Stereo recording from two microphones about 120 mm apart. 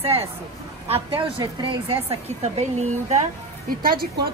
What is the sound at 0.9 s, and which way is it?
A woman's voice, 45° right (ahead or behind).